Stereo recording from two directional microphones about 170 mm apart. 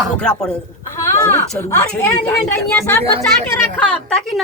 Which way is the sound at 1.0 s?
20° left (ahead or behind).